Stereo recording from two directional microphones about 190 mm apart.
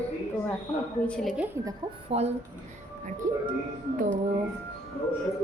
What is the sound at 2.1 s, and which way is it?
Speech, 35° right (ahead or behind).